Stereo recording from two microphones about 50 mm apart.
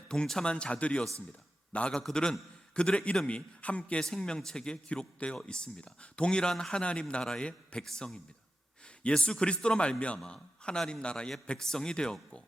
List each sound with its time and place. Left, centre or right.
0.1 s a man's voice: centre
4.0 s a man's voice: centre
7.9 s a man's voice: centre